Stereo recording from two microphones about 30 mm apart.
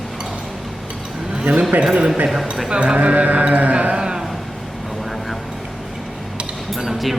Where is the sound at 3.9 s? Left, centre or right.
Right.